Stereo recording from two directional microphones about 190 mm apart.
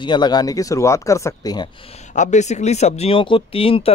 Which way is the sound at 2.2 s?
40° left (ahead or behind).